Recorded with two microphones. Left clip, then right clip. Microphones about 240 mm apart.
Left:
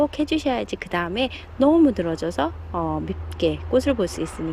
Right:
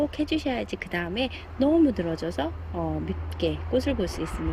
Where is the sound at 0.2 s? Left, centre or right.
Centre.